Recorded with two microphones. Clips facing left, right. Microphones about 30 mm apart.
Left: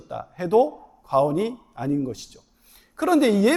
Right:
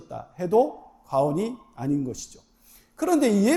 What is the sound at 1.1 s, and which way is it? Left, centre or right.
A man's voice, left.